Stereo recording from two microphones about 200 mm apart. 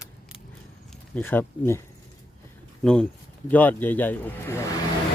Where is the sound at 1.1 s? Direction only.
10° left (ahead or behind).